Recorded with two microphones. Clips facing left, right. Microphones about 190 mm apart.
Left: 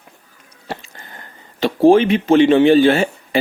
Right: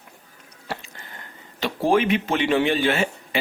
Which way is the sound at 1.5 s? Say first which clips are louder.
Left 9 dB; 30° left (ahead or behind).